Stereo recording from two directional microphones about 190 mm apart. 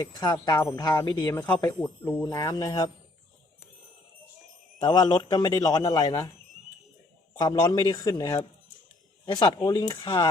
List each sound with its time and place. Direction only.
0.2 s speech: 20° left (ahead or behind)
4.8 s speech: 25° left (ahead or behind)
7.3 s speech: 20° left (ahead or behind)